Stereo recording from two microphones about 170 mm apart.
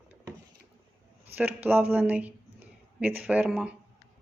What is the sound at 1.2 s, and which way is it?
Speech, 10° right (ahead or behind).